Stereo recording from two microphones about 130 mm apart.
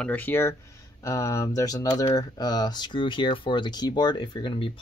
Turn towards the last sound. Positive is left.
turn(degrees=40)  # may be behind; listen again after turning